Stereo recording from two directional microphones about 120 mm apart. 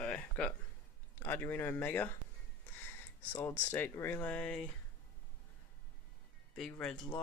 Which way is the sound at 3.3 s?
20° left (ahead or behind).